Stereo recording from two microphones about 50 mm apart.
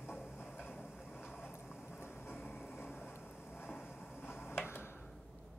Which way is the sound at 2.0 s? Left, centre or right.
Left.